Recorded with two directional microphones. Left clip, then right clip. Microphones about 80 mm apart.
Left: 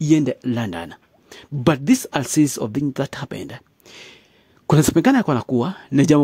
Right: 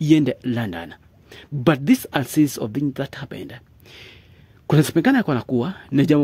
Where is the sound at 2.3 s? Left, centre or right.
Left.